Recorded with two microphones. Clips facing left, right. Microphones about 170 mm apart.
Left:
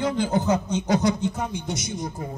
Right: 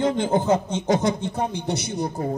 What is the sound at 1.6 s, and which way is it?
Speech, 65° right (ahead or behind).